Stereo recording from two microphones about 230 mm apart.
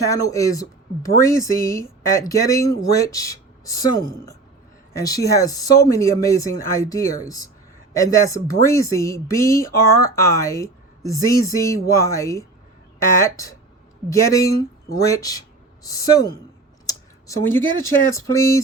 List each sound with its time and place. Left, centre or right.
0.1 s speech: centre